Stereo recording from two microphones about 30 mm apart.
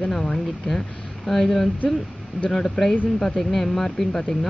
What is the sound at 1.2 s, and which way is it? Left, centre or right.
Speech, centre.